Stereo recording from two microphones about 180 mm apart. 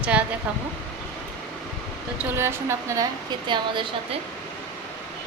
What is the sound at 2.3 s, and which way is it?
Speech, 15° right (ahead or behind).